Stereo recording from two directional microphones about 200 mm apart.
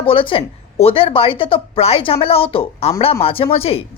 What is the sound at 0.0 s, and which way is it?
A woman's voice, 25° left (ahead or behind).